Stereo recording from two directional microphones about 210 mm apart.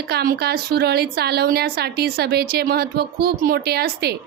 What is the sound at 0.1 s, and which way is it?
A woman's voice, 50° right (ahead or behind).